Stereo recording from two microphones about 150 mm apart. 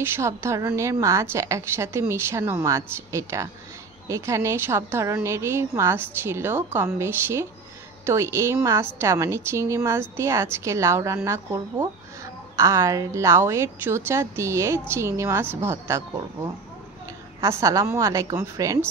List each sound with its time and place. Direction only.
0.0 s a woman's voice: 15° right (ahead or behind)
17.4 s a woman's voice: 20° right (ahead or behind)